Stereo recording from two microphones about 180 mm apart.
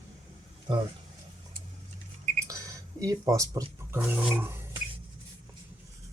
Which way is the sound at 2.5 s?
20° right (ahead or behind).